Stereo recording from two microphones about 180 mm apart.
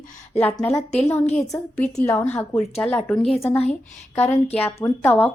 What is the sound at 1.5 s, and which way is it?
A woman's voice, 10° left (ahead or behind).